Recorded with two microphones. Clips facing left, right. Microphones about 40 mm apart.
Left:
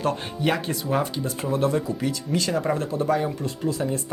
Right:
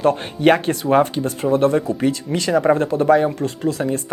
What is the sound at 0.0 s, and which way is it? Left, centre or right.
Speech, right.